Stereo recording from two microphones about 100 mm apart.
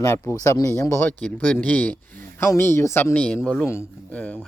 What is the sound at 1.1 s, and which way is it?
Speech, 10° left (ahead or behind).